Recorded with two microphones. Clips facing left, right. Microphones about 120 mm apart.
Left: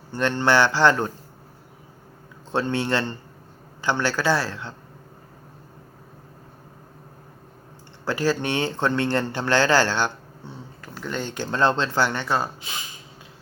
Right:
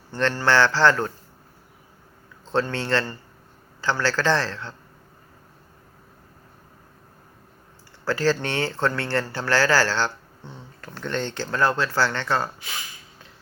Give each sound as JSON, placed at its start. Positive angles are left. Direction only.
{"t": 0.1, "sound": "speech", "side_deg": 15}
{"t": 2.5, "sound": "speech", "side_deg": 15}
{"t": 8.0, "sound": "speech", "side_deg": 15}